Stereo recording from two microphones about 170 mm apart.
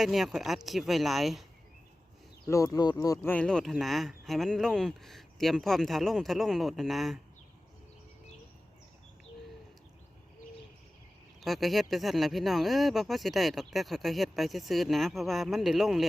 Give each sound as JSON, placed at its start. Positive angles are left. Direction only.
{"t": 0.0, "sound": "speech", "side_deg": 0}
{"t": 2.5, "sound": "speech", "side_deg": 20}
{"t": 3.3, "sound": "speech", "side_deg": 5}
{"t": 11.4, "sound": "speech", "side_deg": 0}